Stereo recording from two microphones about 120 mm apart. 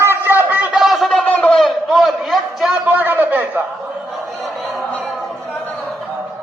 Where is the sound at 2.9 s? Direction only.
15° right (ahead or behind).